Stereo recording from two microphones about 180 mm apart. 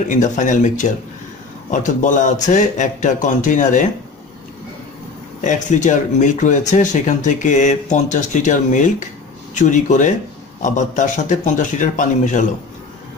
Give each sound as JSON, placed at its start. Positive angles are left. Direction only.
{"t": 0.1, "sound": "speech", "side_deg": 45}
{"t": 5.4, "sound": "speech", "side_deg": 45}